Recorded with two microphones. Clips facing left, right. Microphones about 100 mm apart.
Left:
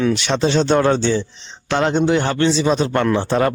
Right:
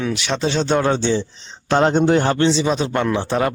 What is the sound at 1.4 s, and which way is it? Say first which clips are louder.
Speech: right 2 dB; 35° right (ahead or behind).